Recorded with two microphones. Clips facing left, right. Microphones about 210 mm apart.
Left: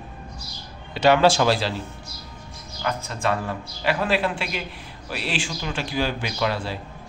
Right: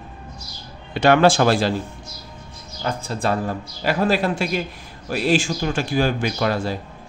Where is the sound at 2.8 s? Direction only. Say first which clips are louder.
Right 2 dB; 35° right (ahead or behind).